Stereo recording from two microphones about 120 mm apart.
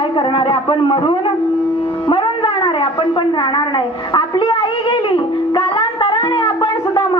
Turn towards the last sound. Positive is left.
turn(degrees=45)  # may be behind; listen again after turning